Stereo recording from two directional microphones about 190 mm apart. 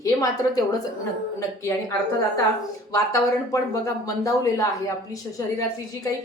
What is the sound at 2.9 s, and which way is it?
A woman's voice, 15° left (ahead or behind).